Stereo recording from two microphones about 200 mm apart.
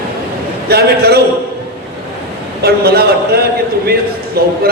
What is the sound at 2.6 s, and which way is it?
Speech, 50° right (ahead or behind).